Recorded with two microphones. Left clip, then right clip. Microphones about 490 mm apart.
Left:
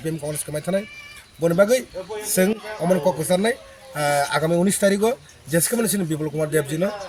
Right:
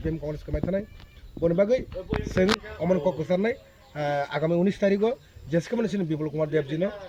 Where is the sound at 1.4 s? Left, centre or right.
Right.